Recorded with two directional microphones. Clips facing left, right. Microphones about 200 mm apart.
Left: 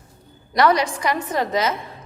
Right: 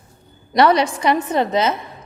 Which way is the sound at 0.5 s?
25° right (ahead or behind).